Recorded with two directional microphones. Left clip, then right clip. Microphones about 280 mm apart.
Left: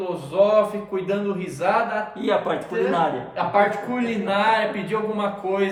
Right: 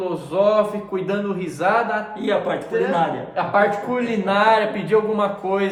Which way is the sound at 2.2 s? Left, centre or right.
Centre.